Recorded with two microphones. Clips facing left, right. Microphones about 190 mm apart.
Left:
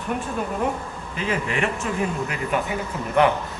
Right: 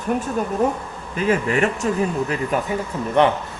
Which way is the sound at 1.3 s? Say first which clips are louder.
Right 6 dB; 40° right (ahead or behind).